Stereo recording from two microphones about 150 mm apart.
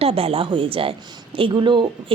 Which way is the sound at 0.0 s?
40° right (ahead or behind).